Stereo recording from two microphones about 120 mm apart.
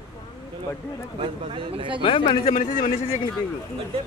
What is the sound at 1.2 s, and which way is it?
Speech, 45° right (ahead or behind).